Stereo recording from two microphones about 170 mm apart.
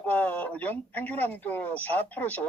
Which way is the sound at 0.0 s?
10° left (ahead or behind).